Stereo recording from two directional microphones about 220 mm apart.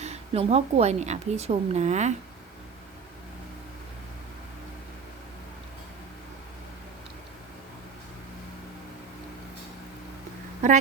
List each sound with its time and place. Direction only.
0.0 s speech: 30° right (ahead or behind)